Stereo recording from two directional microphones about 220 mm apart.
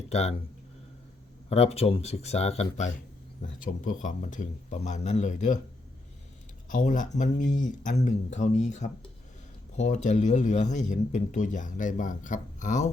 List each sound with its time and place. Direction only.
0.1 s speech: 30° left (ahead or behind)
1.5 s speech: 30° left (ahead or behind)
6.7 s speech: 35° left (ahead or behind)